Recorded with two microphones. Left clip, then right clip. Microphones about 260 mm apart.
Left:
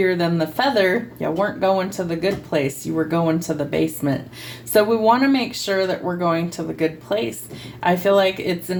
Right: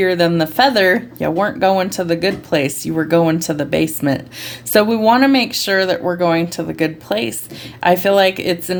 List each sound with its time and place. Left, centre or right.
0.0 s speech: right